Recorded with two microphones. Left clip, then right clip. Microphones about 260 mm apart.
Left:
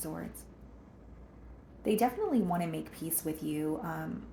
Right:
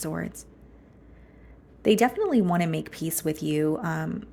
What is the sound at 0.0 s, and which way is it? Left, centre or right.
Speech, right.